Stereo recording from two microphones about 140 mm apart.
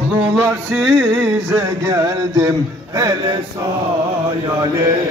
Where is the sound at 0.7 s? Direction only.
Centre (ahead or behind).